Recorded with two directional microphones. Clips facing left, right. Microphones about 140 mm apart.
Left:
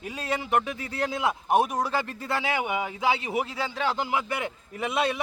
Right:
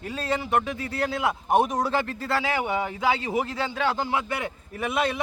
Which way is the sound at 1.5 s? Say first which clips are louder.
Right 2 dB; 10° left (ahead or behind).